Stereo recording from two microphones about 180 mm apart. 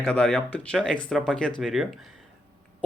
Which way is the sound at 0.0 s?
5° left (ahead or behind).